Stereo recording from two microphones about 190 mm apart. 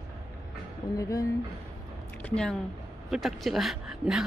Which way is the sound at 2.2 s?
5° left (ahead or behind).